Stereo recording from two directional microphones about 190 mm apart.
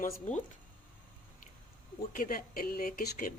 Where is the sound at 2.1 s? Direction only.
45° left (ahead or behind).